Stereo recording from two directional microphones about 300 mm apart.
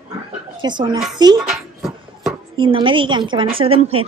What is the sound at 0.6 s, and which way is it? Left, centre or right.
Speech, centre.